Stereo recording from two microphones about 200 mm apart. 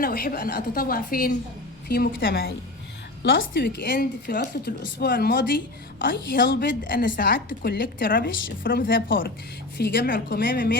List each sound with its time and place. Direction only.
0.0 s a woman's voice: 45° left (ahead or behind)
3.6 s a woman's voice: 60° left (ahead or behind)
3.9 s a woman's voice: 45° left (ahead or behind)
9.7 s a woman's voice: 55° left (ahead or behind)